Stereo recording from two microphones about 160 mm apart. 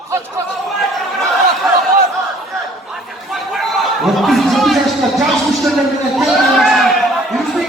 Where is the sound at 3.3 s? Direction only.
Centre (ahead or behind).